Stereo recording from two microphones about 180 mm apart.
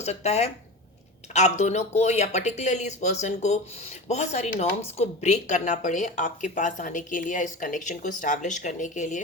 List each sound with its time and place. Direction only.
0.0 s speech: 35° left (ahead or behind)